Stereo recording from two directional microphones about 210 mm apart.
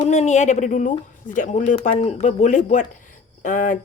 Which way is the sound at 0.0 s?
30° left (ahead or behind).